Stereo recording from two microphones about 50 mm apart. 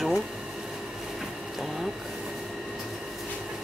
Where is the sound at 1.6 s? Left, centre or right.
Centre.